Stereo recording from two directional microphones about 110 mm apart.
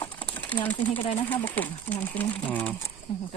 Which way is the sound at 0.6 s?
15° left (ahead or behind).